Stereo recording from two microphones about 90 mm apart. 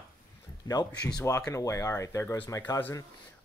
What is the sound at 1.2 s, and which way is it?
Speech, 35° left (ahead or behind).